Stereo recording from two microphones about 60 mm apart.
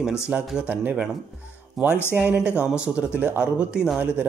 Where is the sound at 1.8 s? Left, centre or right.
Centre.